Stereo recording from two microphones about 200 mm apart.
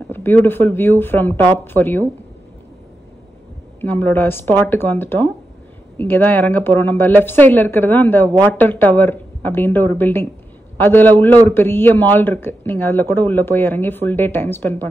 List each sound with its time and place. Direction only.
0.1 s a man's voice: 10° left (ahead or behind)
3.8 s a man's voice: 10° left (ahead or behind)